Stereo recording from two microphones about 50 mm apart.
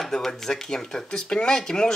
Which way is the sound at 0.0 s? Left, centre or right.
Centre.